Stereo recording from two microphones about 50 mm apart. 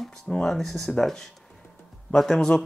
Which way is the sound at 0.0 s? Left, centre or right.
Centre.